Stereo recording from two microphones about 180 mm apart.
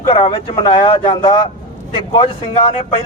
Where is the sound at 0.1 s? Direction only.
30° left (ahead or behind).